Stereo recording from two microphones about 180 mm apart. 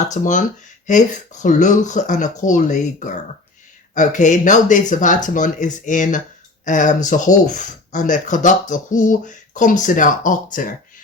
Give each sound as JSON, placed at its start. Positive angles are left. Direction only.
{"t": 0.1, "sound": "speech", "side_deg": 45}